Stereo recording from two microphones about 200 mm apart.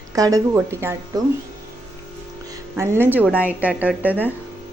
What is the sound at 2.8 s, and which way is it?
A woman's voice, 10° right (ahead or behind).